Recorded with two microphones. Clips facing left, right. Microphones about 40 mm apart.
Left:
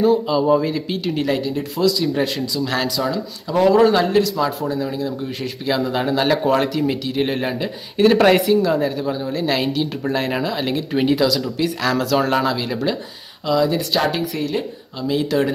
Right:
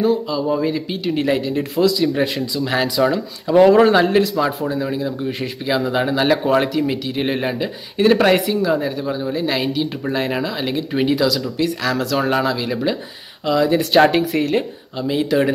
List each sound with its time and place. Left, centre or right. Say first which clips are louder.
0.3 s speech: left 4 dB; centre
0.6 s speech: right 1 dB; centre
1.1 s speech: right 3 dB; centre
13.5 s speech: right 1 dB; centre
13.7 s speech: right 6 dB; right
15.0 s speech: right 1 dB; centre